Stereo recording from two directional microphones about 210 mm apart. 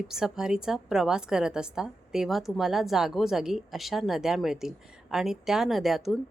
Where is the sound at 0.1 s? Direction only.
Centre (ahead or behind).